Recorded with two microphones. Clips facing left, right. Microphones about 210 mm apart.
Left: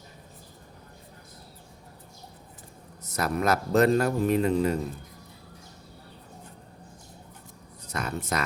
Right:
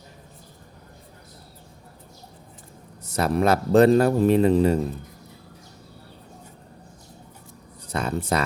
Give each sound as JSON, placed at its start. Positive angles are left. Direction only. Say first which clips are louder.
{"t": 3.0, "sound": "speech", "louder": "right 6 dB", "side_deg": -30}
{"t": 7.9, "sound": "speech", "louder": "right 6 dB", "side_deg": -30}